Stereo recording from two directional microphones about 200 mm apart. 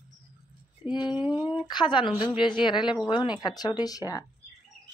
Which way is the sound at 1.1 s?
5° right (ahead or behind).